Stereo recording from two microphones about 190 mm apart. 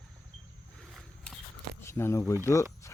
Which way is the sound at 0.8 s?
Centre (ahead or behind).